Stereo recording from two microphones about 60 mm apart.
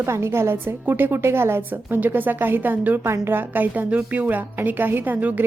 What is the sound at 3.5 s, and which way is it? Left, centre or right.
A woman's voice, right.